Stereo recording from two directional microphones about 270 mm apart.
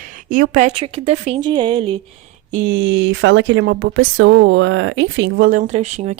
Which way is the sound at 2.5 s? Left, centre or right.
Right.